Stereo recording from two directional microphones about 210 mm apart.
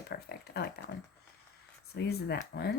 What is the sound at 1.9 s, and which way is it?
Speech, 50° left (ahead or behind).